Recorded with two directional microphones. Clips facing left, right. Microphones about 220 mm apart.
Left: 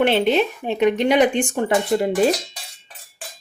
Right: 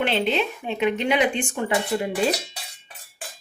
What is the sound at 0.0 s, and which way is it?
Speech, 45° left (ahead or behind).